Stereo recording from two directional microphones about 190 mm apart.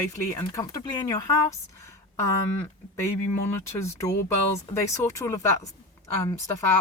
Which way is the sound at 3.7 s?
15° left (ahead or behind).